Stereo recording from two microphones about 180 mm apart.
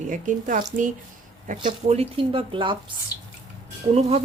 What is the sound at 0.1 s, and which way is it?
Speech, 45° right (ahead or behind).